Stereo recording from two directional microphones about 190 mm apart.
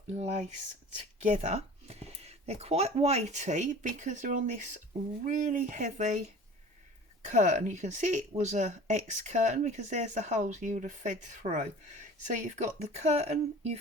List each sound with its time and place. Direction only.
1.2 s speech: 40° right (ahead or behind)